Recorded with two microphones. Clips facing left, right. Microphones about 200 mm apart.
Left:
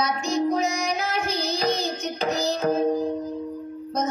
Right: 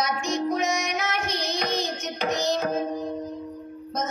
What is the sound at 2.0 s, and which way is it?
Music, 35° left (ahead or behind).